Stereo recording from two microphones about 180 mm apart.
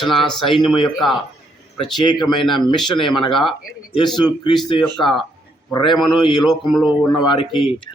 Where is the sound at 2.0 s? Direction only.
25° left (ahead or behind).